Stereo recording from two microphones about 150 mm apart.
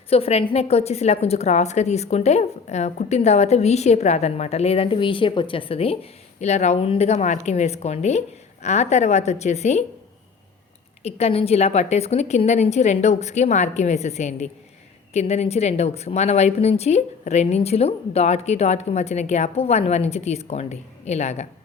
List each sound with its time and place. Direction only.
0.1 s a woman's voice: 40° left (ahead or behind)
11.0 s a woman's voice: 45° left (ahead or behind)